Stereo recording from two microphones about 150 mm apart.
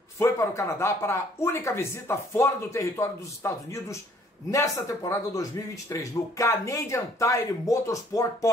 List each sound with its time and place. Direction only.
0.2 s speech: 20° left (ahead or behind)